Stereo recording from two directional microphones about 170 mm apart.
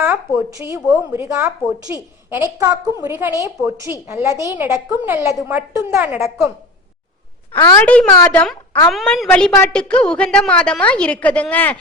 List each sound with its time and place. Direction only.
0.0 s a woman's voice: 15° right (ahead or behind)
7.6 s a woman's voice: 20° left (ahead or behind)
7.9 s a woman's voice: 10° left (ahead or behind)
8.9 s a woman's voice: centre (ahead or behind)